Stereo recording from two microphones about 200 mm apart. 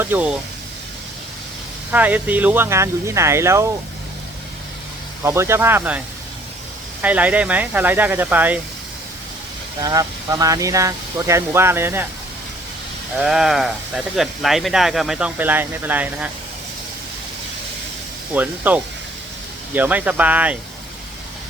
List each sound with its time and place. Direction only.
0.0 s speech: 10° right (ahead or behind)
1.9 s speech: 10° right (ahead or behind)
5.2 s speech: 15° right (ahead or behind)
7.0 s speech: 5° right (ahead or behind)
9.8 s speech: 20° right (ahead or behind)
13.2 s speech: centre (ahead or behind)
18.3 s speech: 10° right (ahead or behind)